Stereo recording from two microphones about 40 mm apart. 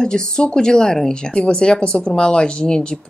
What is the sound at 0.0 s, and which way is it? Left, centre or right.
A woman's voice, centre.